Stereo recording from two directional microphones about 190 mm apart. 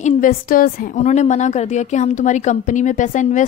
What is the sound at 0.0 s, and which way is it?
A woman's voice, 45° left (ahead or behind).